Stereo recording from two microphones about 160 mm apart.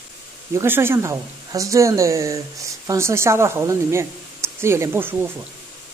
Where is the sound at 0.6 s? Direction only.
15° right (ahead or behind).